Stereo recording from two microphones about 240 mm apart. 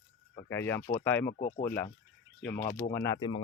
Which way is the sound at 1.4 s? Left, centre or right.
Left.